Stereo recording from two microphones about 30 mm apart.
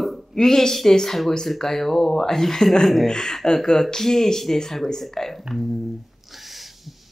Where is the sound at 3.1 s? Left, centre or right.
Left.